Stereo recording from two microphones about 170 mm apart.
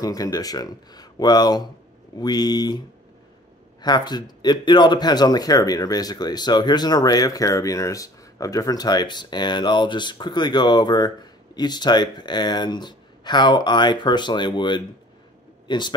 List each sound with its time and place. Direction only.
0.0 s speech: 20° left (ahead or behind)
3.8 s speech: 25° left (ahead or behind)